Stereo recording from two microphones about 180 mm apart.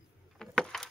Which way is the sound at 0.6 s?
5° left (ahead or behind).